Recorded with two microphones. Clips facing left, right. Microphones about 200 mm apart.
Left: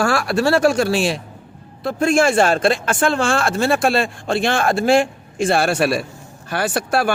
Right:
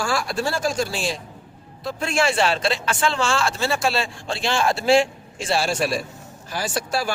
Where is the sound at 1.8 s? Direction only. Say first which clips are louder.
Left 7 dB; 55° left (ahead or behind).